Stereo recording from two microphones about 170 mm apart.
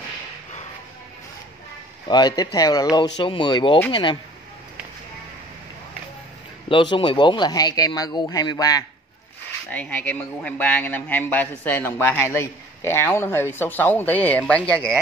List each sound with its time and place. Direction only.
2.0 s speech: 25° left (ahead or behind)
6.7 s speech: 30° left (ahead or behind)
9.7 s a man's voice: 10° left (ahead or behind)